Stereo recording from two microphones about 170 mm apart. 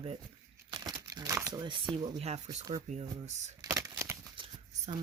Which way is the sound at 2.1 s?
40° right (ahead or behind).